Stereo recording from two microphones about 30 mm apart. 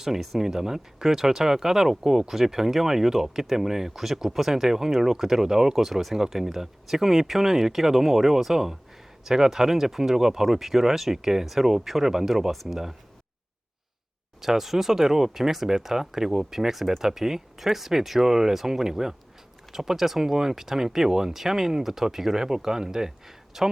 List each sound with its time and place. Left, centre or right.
0.0 s speech: centre
14.4 s speech: centre